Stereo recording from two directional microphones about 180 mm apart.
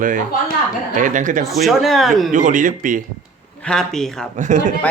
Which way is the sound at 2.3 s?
45° right (ahead or behind).